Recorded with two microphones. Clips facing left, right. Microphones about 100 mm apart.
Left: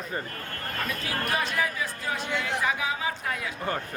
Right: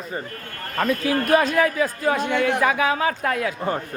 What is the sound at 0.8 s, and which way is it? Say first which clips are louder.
Speech: right 11 dB; 55° right (ahead or behind).